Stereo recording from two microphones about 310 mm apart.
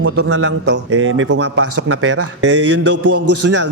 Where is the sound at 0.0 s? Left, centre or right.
Right.